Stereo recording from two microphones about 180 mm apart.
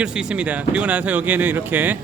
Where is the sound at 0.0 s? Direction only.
5° right (ahead or behind).